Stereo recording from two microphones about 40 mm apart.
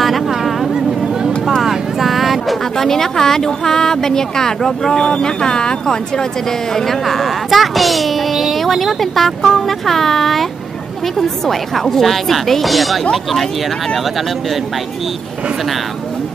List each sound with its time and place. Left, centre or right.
0.3 s a sound: centre
0.7 s vehicle: centre
1.6 s a child's voice: centre